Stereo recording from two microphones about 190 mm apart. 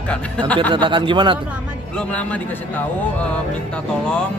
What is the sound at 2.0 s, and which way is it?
A man's voice, 5° left (ahead or behind).